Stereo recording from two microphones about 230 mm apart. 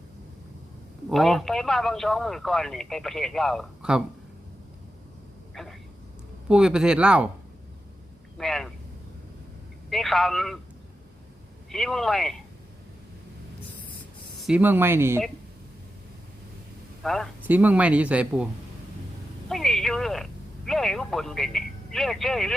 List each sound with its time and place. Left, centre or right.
1.1 s speech: centre
5.6 s vehicle: centre
6.5 s speech: centre
8.4 s speech: centre
9.9 s speech: centre
11.7 s speech: centre
14.4 s speech: centre
17.0 s speech: centre
19.5 s speech: centre